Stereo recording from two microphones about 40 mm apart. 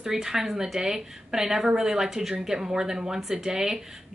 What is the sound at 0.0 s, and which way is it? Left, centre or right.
Speech, centre.